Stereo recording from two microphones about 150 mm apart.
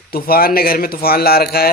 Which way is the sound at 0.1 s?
80° left.